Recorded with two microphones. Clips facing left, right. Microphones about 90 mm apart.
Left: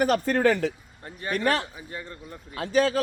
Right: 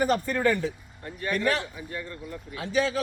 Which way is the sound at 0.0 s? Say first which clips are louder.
Left 3 dB; 80° left.